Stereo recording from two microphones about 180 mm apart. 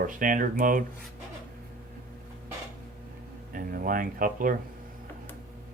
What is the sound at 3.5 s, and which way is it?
Speech, 50° right (ahead or behind).